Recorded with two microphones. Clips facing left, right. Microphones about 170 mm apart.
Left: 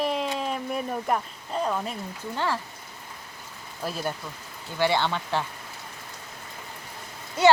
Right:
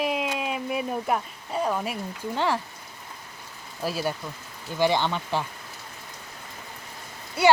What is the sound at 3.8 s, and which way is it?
Speech, 10° right (ahead or behind).